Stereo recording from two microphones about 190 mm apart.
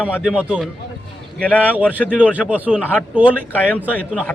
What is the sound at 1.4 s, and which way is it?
Speech, 10° left (ahead or behind).